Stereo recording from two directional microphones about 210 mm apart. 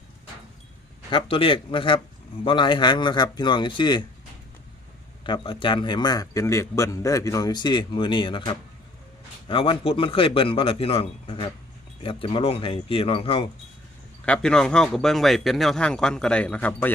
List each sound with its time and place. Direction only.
1.1 s a man's voice: 25° left (ahead or behind)
5.2 s a man's voice: 25° left (ahead or behind)
14.3 s speech: 5° left (ahead or behind)